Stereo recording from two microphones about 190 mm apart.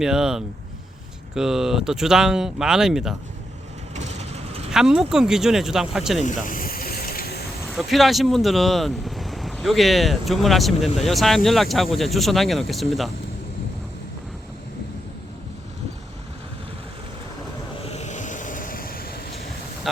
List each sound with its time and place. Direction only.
0.0 s speech: 5° right (ahead or behind)
3.9 s vehicle: 35° right (ahead or behind)
4.7 s speech: centre (ahead or behind)
6.4 s mechanisms: 45° left (ahead or behind)
7.6 s speech: centre (ahead or behind)
17.8 s vehicle: 35° left (ahead or behind); by 19.2 s 50° left (ahead or behind)